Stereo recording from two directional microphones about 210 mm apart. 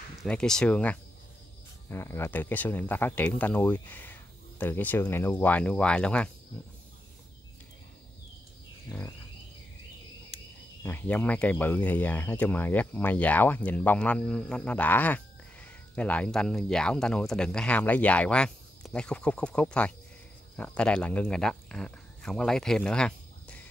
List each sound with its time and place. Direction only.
0.2 s speech: 5° left (ahead or behind)
8.9 s speech: 15° left (ahead or behind)
10.8 s speech: 10° left (ahead or behind)